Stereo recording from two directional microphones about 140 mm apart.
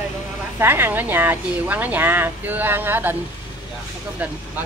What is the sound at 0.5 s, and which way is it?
Speech, 15° right (ahead or behind).